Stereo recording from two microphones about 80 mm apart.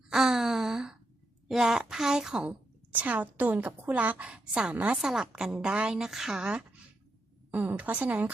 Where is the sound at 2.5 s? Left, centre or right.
Centre.